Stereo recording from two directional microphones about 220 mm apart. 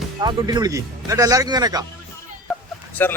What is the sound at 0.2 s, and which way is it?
Speech, 20° right (ahead or behind).